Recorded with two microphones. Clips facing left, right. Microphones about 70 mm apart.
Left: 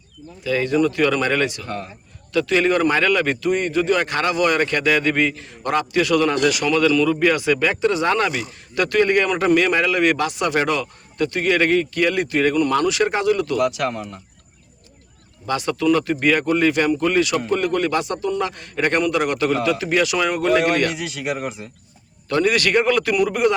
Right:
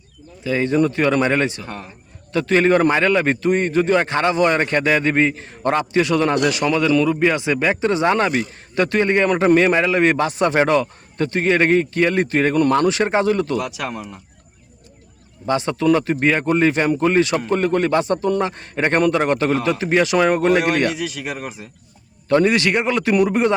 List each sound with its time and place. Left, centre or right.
0.4 s a man's voice: right
1.6 s a man's voice: centre
2.3 s a man's voice: right
13.6 s a man's voice: centre
15.4 s a man's voice: right
20.9 s a man's voice: centre
22.3 s a man's voice: right